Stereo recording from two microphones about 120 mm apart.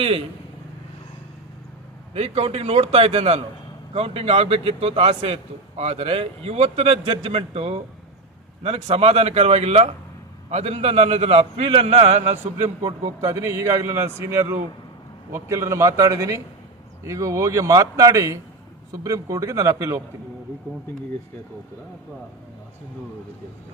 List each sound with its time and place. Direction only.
0.0 s a man's voice: 55° right (ahead or behind)
2.1 s a man's voice: 60° right (ahead or behind)
13.2 s speech: 25° right (ahead or behind)